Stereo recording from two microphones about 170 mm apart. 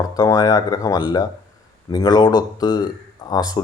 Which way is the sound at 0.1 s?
20° left (ahead or behind).